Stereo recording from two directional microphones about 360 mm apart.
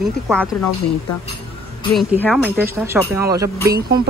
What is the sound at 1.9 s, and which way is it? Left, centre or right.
Speech, centre.